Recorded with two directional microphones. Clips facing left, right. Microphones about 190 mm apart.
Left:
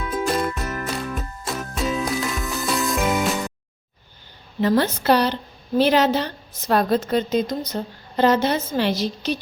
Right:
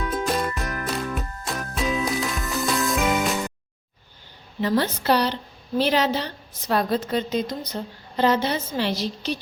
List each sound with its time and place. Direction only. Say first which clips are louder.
0.0 s music: left 2 dB; 5° left (ahead or behind)
4.6 s a woman's voice: left 3 dB; 50° left (ahead or behind)